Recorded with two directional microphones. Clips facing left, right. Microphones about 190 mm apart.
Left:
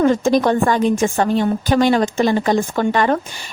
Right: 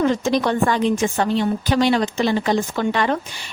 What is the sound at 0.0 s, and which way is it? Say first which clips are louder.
A woman's voice: left 4 dB; 50° left (ahead or behind).